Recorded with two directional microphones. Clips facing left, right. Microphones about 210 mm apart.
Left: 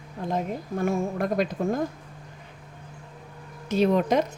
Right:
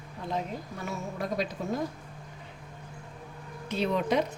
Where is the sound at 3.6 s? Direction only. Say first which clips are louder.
Left 7 dB; 45° left (ahead or behind).